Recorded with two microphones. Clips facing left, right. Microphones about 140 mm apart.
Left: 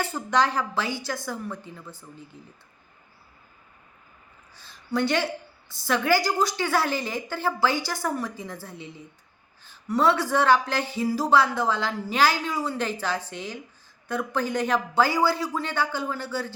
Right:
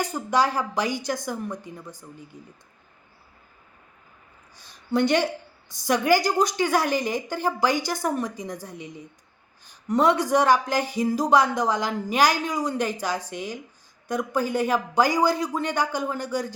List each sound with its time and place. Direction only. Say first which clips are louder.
0.0 s speech: right 1 dB; 10° right (ahead or behind)
4.5 s speech: right 3 dB; 15° right (ahead or behind)